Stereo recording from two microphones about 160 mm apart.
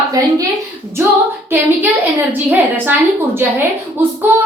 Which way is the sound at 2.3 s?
10° right (ahead or behind).